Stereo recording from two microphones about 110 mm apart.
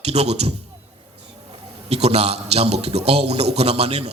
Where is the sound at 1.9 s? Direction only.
70° right (ahead or behind).